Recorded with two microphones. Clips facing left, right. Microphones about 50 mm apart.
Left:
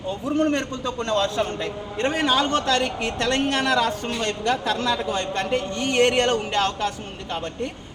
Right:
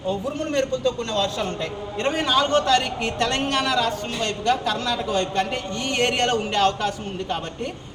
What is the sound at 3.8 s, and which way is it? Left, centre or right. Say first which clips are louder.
A man's voice: left 1 dB; centre.